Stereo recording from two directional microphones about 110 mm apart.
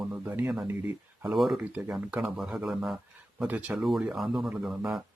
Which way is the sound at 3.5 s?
15° right (ahead or behind).